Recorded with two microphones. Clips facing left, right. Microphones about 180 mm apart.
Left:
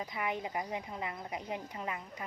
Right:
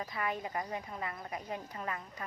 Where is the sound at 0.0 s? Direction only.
15° left (ahead or behind).